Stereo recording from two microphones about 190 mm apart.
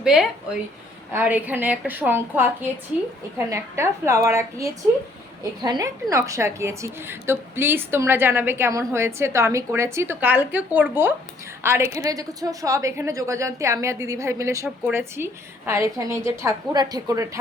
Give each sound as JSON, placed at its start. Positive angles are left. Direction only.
{"t": 0.0, "sound": "a woman's voice", "side_deg": -5}